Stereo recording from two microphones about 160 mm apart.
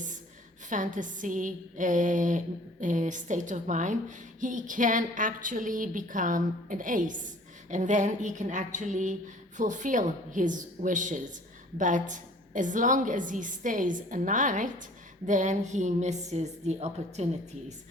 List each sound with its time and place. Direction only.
0.7 s a woman's voice: 55° right (ahead or behind)